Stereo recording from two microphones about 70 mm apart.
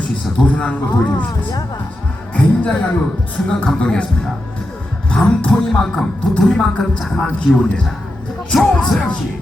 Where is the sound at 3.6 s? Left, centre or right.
Centre.